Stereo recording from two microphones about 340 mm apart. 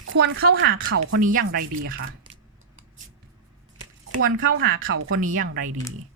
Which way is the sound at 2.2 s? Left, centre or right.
Centre.